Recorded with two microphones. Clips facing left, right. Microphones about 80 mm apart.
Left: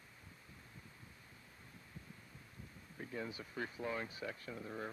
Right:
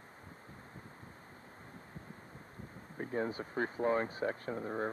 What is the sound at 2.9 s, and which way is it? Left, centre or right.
Speech, right.